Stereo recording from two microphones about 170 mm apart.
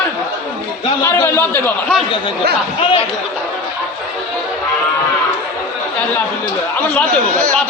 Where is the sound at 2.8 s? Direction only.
30° left (ahead or behind).